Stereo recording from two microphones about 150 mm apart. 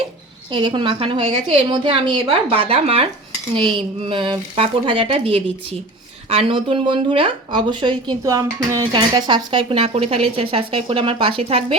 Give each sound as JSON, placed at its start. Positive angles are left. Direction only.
{"t": 0.5, "sound": "speech", "side_deg": -35}
{"t": 8.2, "sound": "speech", "side_deg": -20}
{"t": 8.8, "sound": "speech", "side_deg": -30}